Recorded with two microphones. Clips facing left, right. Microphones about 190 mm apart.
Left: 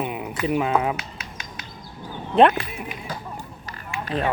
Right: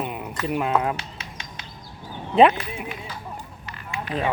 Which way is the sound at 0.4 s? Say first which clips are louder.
Left 1 dB; centre (ahead or behind).